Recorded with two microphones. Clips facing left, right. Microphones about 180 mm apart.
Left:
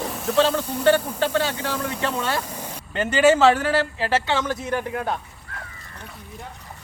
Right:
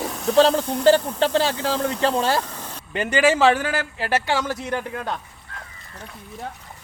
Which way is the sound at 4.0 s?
30° left (ahead or behind).